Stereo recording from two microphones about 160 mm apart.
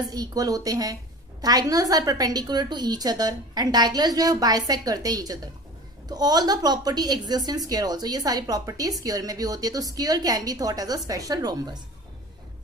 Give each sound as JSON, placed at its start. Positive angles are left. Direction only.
{"t": 0.1, "sound": "a woman's voice", "side_deg": -25}